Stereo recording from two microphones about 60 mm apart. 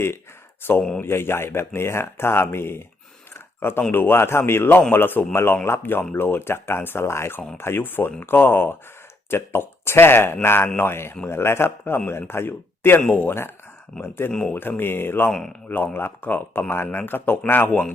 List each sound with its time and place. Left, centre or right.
1.0 s speech: left
15.3 s speech: centre
15.7 s speech: left
17.7 s speech: centre